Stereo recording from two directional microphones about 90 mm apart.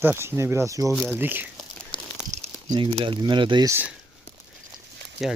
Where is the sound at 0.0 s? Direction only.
25° right (ahead or behind).